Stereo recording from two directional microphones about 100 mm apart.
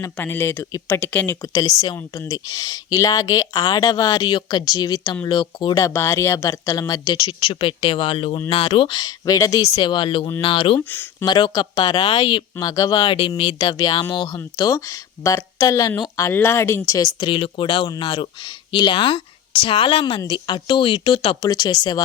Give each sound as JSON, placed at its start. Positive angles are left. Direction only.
{"t": 0.2, "sound": "speech", "side_deg": 25}
{"t": 1.4, "sound": "speech", "side_deg": 35}
{"t": 5.7, "sound": "a woman's voice", "side_deg": 30}
{"t": 9.0, "sound": "speech", "side_deg": 40}
{"t": 9.7, "sound": "a woman's voice", "side_deg": 50}
{"t": 11.3, "sound": "speech", "side_deg": 45}
{"t": 12.0, "sound": "a woman's voice", "side_deg": 65}
{"t": 12.5, "sound": "speech", "side_deg": 40}
{"t": 13.1, "sound": "a woman's voice", "side_deg": 65}
{"t": 13.6, "sound": "speech", "side_deg": 40}
{"t": 17.1, "sound": "a woman's voice", "side_deg": 55}
{"t": 21.4, "sound": "speech", "side_deg": 40}